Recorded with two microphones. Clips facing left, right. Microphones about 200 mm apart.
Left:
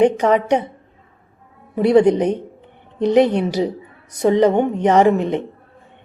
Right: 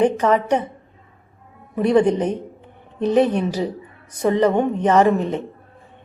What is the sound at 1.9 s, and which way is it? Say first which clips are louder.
A woman's voice: left 3 dB; 10° left (ahead or behind).